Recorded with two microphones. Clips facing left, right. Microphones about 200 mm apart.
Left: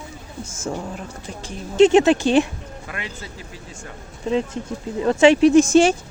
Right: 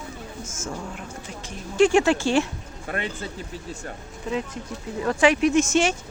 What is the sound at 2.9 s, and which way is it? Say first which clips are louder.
Speech: right 5 dB; 35° right (ahead or behind).